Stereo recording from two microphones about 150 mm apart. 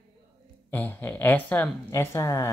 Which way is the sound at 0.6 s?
10° left (ahead or behind).